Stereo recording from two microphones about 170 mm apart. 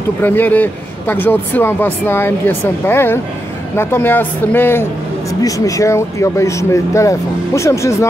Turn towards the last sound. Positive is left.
turn(degrees=15)  # may be behind; listen again after turning